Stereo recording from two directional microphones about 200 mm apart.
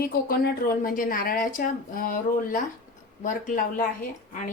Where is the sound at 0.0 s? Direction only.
50° left (ahead or behind).